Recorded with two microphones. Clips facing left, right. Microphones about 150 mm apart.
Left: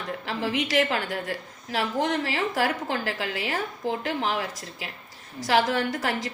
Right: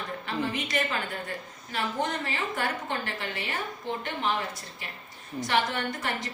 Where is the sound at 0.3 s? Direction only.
90° left.